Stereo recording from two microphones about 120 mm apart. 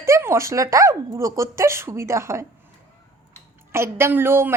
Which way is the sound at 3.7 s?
20° right (ahead or behind).